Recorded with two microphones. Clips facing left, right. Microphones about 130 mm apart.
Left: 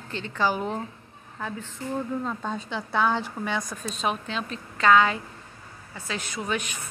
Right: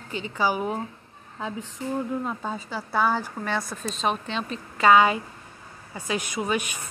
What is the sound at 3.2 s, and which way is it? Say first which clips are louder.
Speech: right 1 dB; 15° left (ahead or behind).